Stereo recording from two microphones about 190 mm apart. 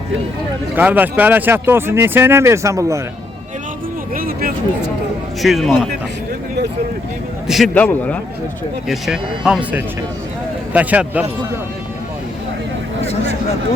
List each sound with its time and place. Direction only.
0.8 s speech: 10° right (ahead or behind)
4.1 s music: 50° right (ahead or behind)
5.4 s speech: centre (ahead or behind)
7.4 s a man's voice: centre (ahead or behind)
8.9 s speech: 5° right (ahead or behind)